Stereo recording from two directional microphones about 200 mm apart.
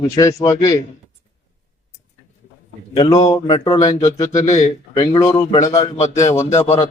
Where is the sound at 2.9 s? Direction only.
20° left (ahead or behind).